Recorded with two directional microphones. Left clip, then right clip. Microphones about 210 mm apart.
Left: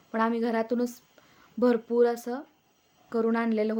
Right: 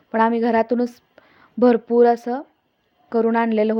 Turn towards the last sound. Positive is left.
turn(degrees=-25)  # may be behind; listen again after turning